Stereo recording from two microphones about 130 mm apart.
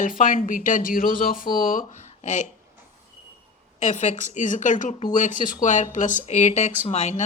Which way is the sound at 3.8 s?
65° left (ahead or behind).